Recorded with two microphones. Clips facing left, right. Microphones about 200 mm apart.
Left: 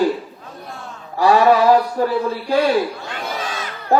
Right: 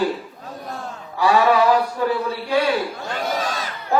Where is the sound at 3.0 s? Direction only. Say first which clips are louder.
Right 3 dB; 45° right (ahead or behind).